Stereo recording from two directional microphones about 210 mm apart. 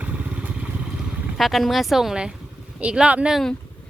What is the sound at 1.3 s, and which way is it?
Speech, centre (ahead or behind).